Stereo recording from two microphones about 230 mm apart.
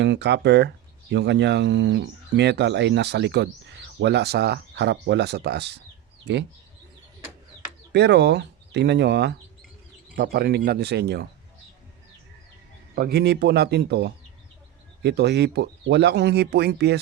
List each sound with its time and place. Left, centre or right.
0.0 s speech: right
7.9 s speech: right
13.0 s speech: right